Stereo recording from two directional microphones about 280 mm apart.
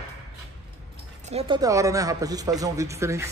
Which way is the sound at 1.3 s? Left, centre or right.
Centre.